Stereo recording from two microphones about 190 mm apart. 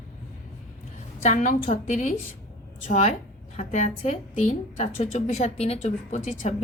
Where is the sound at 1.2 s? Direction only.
40° left (ahead or behind).